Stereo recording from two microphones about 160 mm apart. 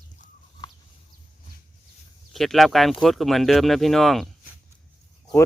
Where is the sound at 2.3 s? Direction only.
Centre (ahead or behind).